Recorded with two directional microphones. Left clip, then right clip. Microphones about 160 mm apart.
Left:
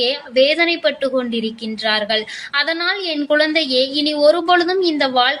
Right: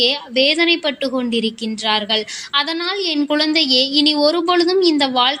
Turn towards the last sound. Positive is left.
turn(degrees=-35)  # may be behind; listen again after turning